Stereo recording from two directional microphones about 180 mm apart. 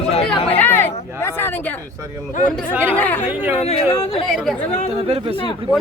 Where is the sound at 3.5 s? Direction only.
35° left (ahead or behind).